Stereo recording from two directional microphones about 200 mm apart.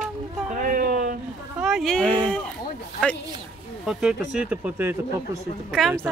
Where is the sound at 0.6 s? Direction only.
45° right (ahead or behind).